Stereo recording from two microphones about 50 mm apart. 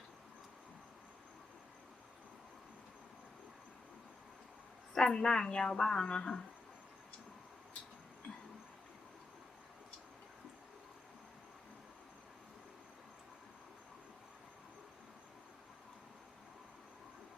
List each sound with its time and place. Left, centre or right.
4.9 s a woman's voice: centre